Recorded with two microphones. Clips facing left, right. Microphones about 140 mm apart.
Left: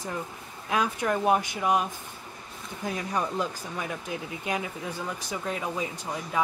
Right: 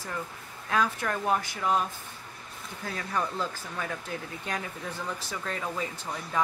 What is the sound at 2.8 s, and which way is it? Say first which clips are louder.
Speech: left 2 dB; 15° left (ahead or behind).